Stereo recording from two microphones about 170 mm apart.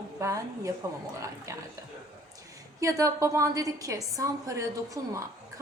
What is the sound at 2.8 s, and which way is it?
A woman's voice, 20° right (ahead or behind).